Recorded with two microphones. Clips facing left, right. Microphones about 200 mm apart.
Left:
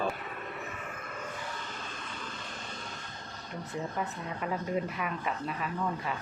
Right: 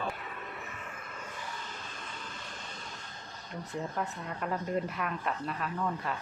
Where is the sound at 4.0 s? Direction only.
5° left (ahead or behind).